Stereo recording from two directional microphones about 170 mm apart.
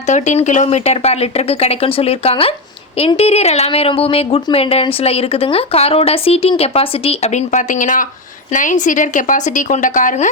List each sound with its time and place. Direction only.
0.1 s a woman's voice: 45° left (ahead or behind)